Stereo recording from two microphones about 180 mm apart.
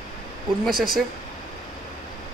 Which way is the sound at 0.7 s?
55° right (ahead or behind).